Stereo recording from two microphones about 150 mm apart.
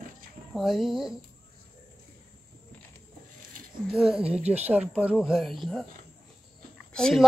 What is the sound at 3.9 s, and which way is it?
Speech, 5° right (ahead or behind).